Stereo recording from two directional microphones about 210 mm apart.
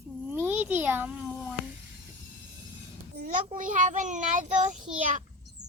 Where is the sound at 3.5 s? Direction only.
40° right (ahead or behind).